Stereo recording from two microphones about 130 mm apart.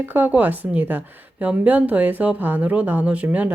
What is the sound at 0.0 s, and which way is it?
A woman's voice, 15° right (ahead or behind).